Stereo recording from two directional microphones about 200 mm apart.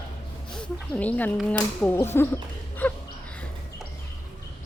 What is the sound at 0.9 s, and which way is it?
Speech, 5° left (ahead or behind).